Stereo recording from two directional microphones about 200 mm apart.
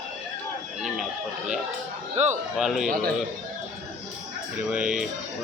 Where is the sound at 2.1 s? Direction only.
35° right (ahead or behind).